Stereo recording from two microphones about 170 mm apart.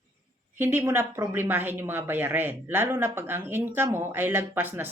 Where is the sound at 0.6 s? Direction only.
15° right (ahead or behind).